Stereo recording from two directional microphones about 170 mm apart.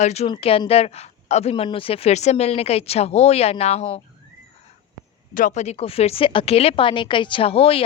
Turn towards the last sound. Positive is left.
turn(degrees=35)  # may be behind; listen again after turning